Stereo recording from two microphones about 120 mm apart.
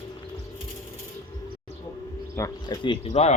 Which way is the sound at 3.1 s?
65° left (ahead or behind).